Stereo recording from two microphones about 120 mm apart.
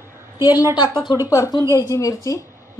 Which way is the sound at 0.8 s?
40° left (ahead or behind).